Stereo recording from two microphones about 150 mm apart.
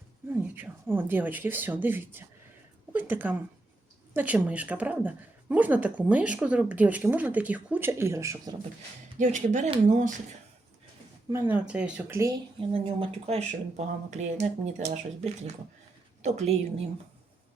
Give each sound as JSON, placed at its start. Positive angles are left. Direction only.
{"t": 0.5, "sound": "a woman's voice", "side_deg": -15}
{"t": 9.1, "sound": "speech", "side_deg": -55}
{"t": 11.3, "sound": "a woman's voice", "side_deg": -15}
{"t": 12.5, "sound": "speech", "side_deg": -40}